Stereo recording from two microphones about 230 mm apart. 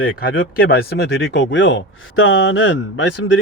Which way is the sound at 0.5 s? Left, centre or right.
Left.